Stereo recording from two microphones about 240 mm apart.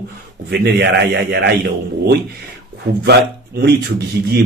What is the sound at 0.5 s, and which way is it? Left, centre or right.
A man's voice, right.